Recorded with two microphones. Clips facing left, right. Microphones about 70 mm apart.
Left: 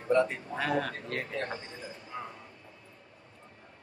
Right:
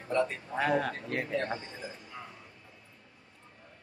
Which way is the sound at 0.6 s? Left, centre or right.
Centre.